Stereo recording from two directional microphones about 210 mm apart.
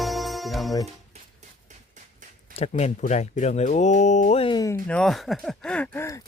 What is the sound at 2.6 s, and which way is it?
Speech, 30° left (ahead or behind).